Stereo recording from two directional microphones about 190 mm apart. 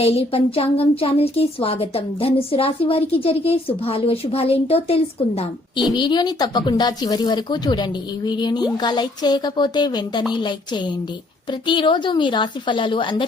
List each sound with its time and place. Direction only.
0.0 s speech: 30° left (ahead or behind)
11.6 s speech: 25° left (ahead or behind)